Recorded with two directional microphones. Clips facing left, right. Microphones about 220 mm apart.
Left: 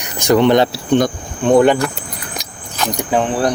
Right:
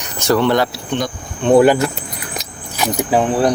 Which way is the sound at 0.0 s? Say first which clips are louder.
Left 3 dB; 15° left (ahead or behind).